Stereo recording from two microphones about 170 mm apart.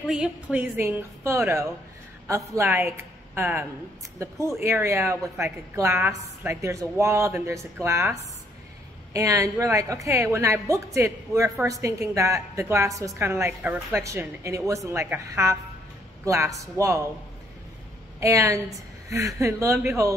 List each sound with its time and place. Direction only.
0.0 s a woman's voice: 5° right (ahead or behind)
18.2 s a woman's voice: 20° right (ahead or behind)